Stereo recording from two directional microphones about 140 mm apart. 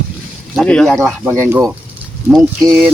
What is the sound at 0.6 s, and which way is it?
Speech, 5° left (ahead or behind).